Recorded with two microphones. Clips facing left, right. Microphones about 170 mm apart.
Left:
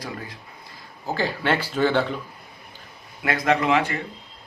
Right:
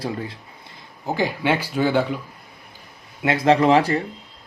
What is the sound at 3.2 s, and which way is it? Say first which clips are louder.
Speech: right 5 dB; 25° right (ahead or behind).